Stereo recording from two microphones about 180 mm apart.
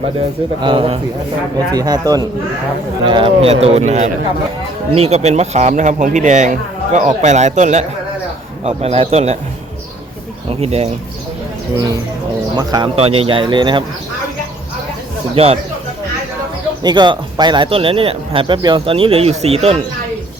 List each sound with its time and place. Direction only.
0.6 s speech: 25° right (ahead or behind)
10.5 s speech: 35° right (ahead or behind)
12.5 s speech: 20° right (ahead or behind)
13.0 s speech: 30° right (ahead or behind)
15.4 s speech: 30° right (ahead or behind)
16.8 s speech: 25° right (ahead or behind)